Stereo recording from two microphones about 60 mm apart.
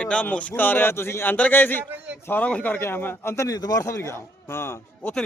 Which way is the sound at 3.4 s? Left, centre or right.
Left.